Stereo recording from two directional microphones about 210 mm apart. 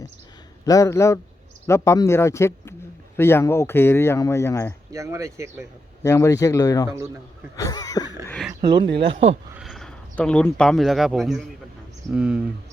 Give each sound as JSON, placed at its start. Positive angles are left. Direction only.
{"t": 0.6, "sound": "speech", "side_deg": 15}
{"t": 4.9, "sound": "speech", "side_deg": -15}
{"t": 6.0, "sound": "speech", "side_deg": 15}
{"t": 8.6, "sound": "speech", "side_deg": -20}
{"t": 9.6, "sound": "speech", "side_deg": 0}